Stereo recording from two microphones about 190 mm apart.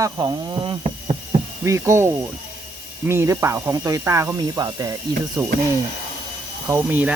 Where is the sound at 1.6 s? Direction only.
15° right (ahead or behind).